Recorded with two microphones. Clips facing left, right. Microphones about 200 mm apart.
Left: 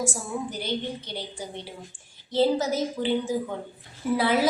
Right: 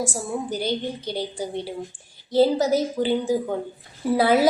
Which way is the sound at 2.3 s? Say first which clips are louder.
Right 4 dB; 40° right (ahead or behind).